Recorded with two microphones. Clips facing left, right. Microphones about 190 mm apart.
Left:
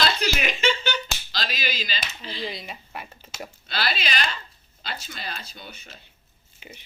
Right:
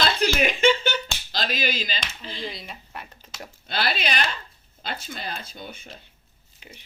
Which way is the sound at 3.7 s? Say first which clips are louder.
Right 2 dB; 50° right (ahead or behind).